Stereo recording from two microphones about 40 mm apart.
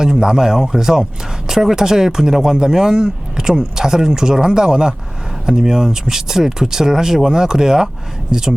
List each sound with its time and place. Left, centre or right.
0.0 s speech: centre